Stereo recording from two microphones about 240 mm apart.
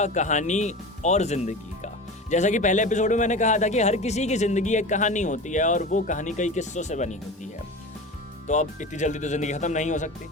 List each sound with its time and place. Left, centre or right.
0.0 s a man's voice: left
8.4 s a man's voice: left